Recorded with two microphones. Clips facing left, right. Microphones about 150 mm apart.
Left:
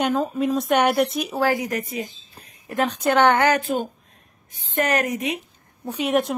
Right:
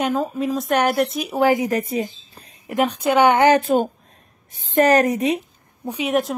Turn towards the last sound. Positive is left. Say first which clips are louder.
# even
turn(degrees=0)  # may be behind; listen again after turning